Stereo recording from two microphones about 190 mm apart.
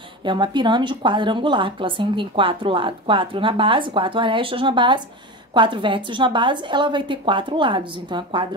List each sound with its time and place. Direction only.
0.2 s speech: 25° right (ahead or behind)